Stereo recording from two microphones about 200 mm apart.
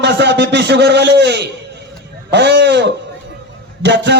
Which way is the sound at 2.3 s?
60° right (ahead or behind).